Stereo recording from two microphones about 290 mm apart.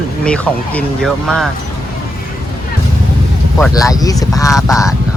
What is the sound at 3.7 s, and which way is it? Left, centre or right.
Speech, centre.